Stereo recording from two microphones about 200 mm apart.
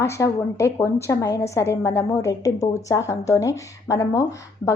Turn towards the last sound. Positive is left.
turn(degrees=15)  # may be behind; listen again after turning